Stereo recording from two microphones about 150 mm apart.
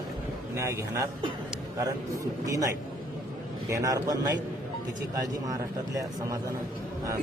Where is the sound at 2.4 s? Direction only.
20° right (ahead or behind).